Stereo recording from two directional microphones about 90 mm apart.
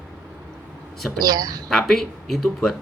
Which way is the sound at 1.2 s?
45° right (ahead or behind).